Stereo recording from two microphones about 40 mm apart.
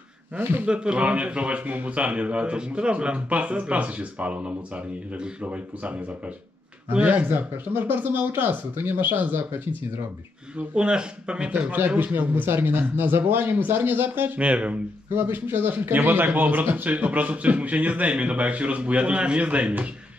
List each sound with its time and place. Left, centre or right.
0.7 s speech: right
7.2 s speech: right
10.7 s speech: right
12.0 s a man's voice: right
12.4 s speech: right
14.4 s speech: right
15.1 s speech: right
16.3 s speech: right